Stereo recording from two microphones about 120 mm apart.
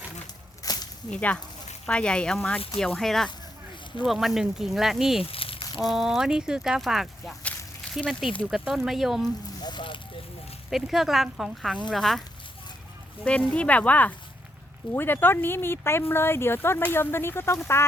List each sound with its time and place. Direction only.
0.6 s a sound: 35° left (ahead or behind)
1.1 s speech: 10° left (ahead or behind)
5.2 s a sound: 50° left (ahead or behind)
5.9 s speech: 5° right (ahead or behind)
8.0 s speech: 10° left (ahead or behind)
8.4 s speech: 5° right (ahead or behind)
9.6 s a sound: 40° left (ahead or behind)
10.7 s speech: centre (ahead or behind)
13.5 s speech: 10° left (ahead or behind)